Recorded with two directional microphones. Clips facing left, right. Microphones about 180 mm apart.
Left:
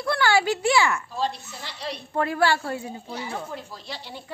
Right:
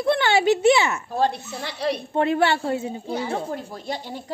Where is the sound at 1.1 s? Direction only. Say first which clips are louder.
Right 6 dB; 60° right (ahead or behind).